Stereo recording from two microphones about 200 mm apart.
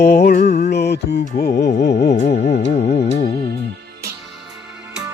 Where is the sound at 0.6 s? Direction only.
55° left (ahead or behind).